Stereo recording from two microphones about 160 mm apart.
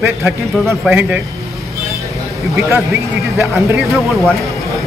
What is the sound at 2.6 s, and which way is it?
Speech, 20° right (ahead or behind).